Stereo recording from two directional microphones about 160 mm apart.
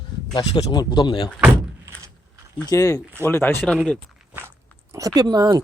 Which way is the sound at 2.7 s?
20° left (ahead or behind).